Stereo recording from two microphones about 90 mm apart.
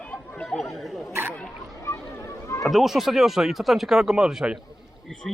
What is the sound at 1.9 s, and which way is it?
Boat, 35° left (ahead or behind).